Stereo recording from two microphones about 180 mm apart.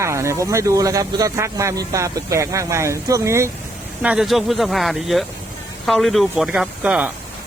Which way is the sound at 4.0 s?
5° right (ahead or behind).